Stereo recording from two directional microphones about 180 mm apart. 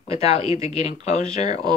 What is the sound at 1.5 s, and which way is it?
Speech, 25° right (ahead or behind).